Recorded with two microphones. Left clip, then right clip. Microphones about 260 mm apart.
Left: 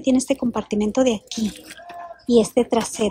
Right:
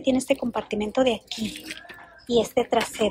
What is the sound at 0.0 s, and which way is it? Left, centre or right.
Speech, centre.